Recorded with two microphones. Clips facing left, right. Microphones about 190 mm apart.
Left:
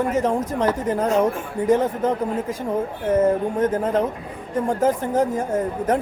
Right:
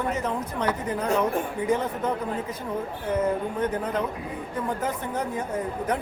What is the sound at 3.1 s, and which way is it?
Speech, 45° left (ahead or behind).